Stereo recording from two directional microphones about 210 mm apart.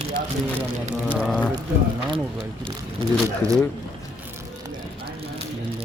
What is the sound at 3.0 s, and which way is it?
Speech, 25° right (ahead or behind).